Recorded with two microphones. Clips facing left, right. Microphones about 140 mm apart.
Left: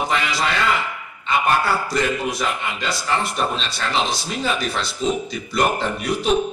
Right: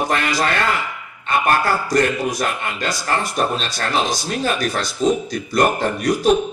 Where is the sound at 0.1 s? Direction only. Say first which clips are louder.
Right 2 dB; 50° right (ahead or behind).